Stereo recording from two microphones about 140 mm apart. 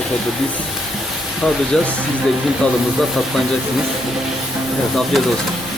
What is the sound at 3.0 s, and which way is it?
Speech, centre (ahead or behind).